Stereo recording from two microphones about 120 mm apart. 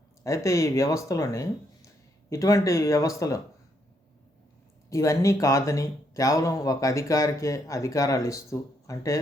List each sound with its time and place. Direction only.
0.3 s speech: 25° left (ahead or behind)
4.9 s speech: 25° left (ahead or behind)